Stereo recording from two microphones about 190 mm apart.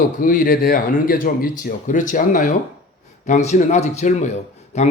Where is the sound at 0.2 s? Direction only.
45° left (ahead or behind).